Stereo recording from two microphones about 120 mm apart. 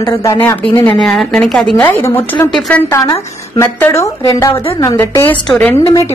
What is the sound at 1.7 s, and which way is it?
Speech, 15° left (ahead or behind).